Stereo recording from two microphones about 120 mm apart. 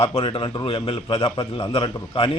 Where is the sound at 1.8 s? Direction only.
45° left (ahead or behind).